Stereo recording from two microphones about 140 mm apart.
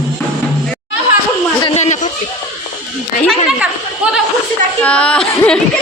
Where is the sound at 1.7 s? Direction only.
55° left (ahead or behind).